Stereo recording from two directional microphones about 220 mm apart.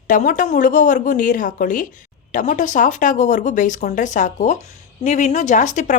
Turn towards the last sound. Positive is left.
turn(degrees=35)  # may be behind; listen again after turning